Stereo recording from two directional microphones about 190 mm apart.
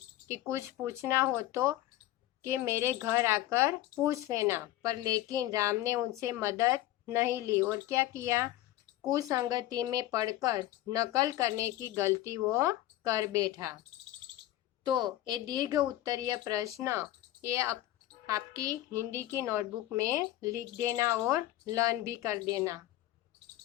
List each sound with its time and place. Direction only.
0.3 s speech: 15° right (ahead or behind)
14.8 s speech: 20° right (ahead or behind)
18.9 s speech: 15° right (ahead or behind)